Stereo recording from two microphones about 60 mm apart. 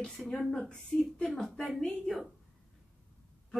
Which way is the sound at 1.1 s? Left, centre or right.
Centre.